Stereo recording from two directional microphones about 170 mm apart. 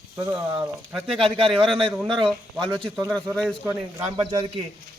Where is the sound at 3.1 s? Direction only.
Centre (ahead or behind).